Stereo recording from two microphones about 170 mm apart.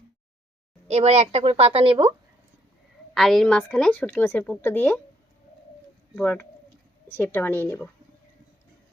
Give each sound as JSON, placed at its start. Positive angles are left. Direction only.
{"t": 0.9, "sound": "a woman's voice", "side_deg": -40}
{"t": 3.2, "sound": "a woman's voice", "side_deg": 0}
{"t": 6.1, "sound": "a woman's voice", "side_deg": 10}